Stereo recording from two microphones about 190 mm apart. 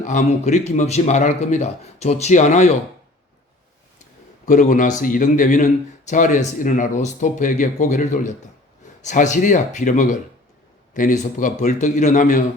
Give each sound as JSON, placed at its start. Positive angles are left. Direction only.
{"t": 0.0, "sound": "a man's voice", "side_deg": 40}
{"t": 4.4, "sound": "a man's voice", "side_deg": 45}